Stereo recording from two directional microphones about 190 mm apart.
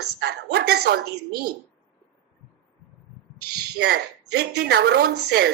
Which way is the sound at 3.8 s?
60° right (ahead or behind).